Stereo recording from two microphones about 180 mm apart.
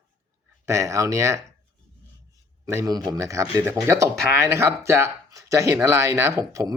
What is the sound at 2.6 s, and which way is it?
Speech, 15° right (ahead or behind).